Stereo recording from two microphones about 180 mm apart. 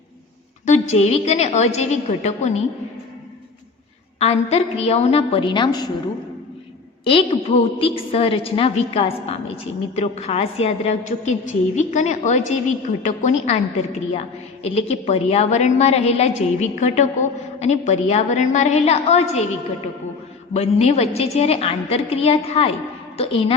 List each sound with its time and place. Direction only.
0.6 s a woman's voice: 40° left (ahead or behind)
4.2 s a woman's voice: 35° left (ahead or behind)
7.0 s a woman's voice: 30° left (ahead or behind)
20.5 s a woman's voice: 35° left (ahead or behind)